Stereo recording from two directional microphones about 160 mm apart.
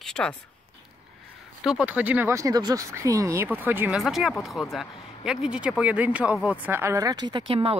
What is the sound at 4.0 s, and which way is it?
Speech, centre (ahead or behind).